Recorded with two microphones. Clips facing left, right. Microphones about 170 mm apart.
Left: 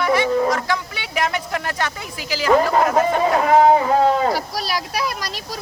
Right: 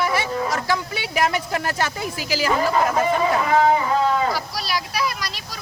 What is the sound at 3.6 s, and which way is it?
Speech, 40° left (ahead or behind).